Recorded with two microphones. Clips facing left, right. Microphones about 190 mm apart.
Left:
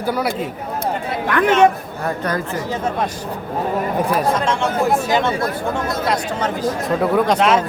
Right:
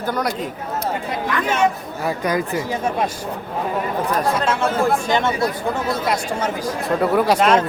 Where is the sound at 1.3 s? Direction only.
60° left (ahead or behind).